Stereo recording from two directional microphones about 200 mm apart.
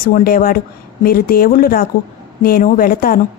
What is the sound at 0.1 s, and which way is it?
A woman's voice, 45° left (ahead or behind).